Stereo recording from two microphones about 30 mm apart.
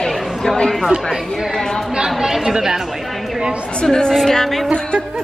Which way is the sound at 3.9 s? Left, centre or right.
Left.